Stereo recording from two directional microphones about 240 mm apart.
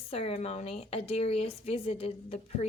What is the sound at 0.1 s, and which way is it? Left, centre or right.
A woman's voice, left.